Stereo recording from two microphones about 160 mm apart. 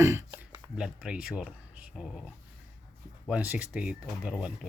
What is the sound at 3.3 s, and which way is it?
Speech, 5° right (ahead or behind).